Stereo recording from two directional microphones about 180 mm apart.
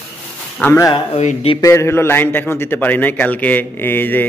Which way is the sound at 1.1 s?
35° left (ahead or behind).